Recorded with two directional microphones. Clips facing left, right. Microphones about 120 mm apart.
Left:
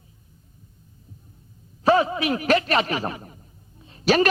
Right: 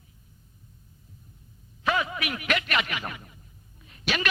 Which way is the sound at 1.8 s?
35° left (ahead or behind).